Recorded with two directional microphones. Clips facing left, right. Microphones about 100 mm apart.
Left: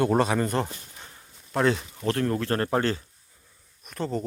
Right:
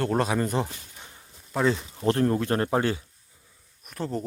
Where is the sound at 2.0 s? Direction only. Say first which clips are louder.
Right 5 dB; 25° right (ahead or behind).